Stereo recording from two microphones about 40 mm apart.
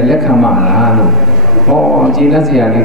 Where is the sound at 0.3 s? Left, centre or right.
Centre.